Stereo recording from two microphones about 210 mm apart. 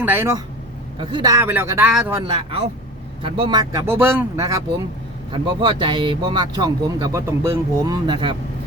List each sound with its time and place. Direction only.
0.0 s speech: 10° right (ahead or behind)
2.1 s speech: 20° right (ahead or behind)